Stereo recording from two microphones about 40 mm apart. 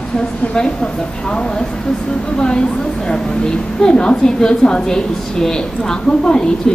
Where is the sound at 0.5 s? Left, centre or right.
Left.